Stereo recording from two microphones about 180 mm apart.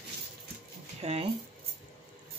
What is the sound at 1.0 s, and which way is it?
Speech, 35° right (ahead or behind).